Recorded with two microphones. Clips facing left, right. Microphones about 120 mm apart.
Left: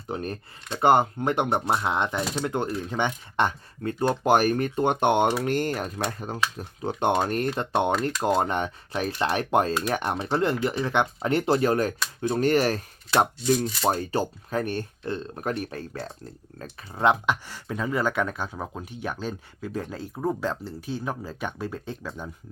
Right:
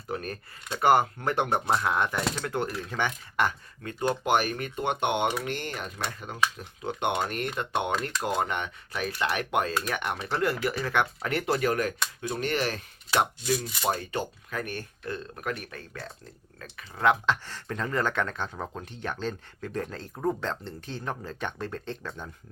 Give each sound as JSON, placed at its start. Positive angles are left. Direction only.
{"t": 0.1, "sound": "speech", "side_deg": 25}
{"t": 12.4, "sound": "speech", "side_deg": 40}